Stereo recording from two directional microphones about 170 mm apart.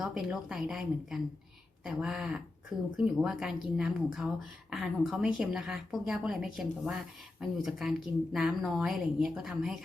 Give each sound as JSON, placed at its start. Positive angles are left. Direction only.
{"t": 0.0, "sound": "speech", "side_deg": -5}